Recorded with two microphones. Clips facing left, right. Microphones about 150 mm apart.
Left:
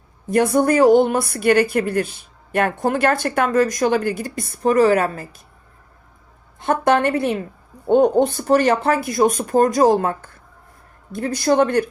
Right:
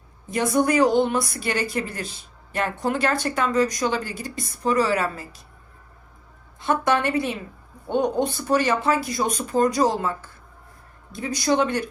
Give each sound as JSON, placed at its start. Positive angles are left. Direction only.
{"t": 0.3, "sound": "a woman's voice", "side_deg": 50}
{"t": 6.6, "sound": "a woman's voice", "side_deg": 55}